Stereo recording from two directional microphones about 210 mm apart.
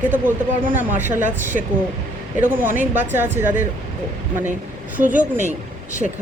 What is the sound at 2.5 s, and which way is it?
Speech, 40° right (ahead or behind).